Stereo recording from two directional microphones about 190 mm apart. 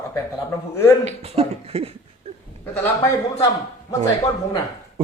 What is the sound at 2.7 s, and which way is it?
Speech, 10° left (ahead or behind).